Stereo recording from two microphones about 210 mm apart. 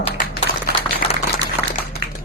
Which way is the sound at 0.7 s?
50° right (ahead or behind).